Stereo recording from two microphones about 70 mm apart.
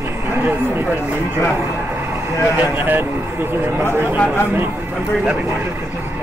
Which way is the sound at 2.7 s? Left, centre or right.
Right.